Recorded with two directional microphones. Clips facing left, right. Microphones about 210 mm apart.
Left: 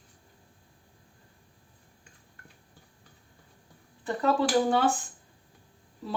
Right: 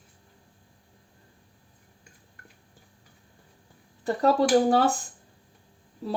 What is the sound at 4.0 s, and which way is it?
Speech, 40° right (ahead or behind).